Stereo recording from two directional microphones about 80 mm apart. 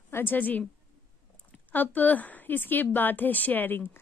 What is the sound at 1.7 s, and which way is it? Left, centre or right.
A woman's voice, left.